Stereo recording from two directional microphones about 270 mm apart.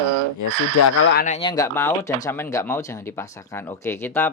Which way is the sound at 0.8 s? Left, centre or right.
Left.